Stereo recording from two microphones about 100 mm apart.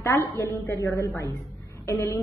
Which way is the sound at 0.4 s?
25° left (ahead or behind).